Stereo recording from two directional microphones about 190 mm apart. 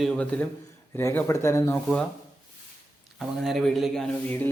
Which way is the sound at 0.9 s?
15° left (ahead or behind).